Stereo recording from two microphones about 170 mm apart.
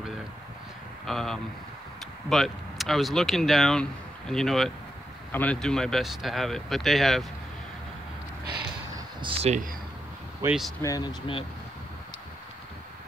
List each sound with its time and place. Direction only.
1.0 s speech: centre (ahead or behind)
9.4 s speech: 45° right (ahead or behind)
10.4 s speech: 5° right (ahead or behind)
10.8 s speech: 20° left (ahead or behind)